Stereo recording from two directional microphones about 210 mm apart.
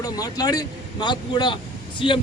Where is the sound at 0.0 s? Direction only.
15° left (ahead or behind).